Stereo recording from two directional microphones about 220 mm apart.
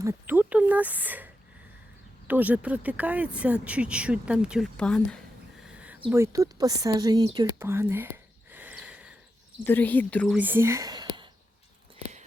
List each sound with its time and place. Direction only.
0.0 s speech: 10° right (ahead or behind)
5.7 s a sound: 5° right (ahead or behind)
6.1 s speech: 10° right (ahead or behind)
7.3 s whispering: 20° right (ahead or behind)
9.6 s speech: 10° left (ahead or behind)
10.3 s speech: 10° right (ahead or behind)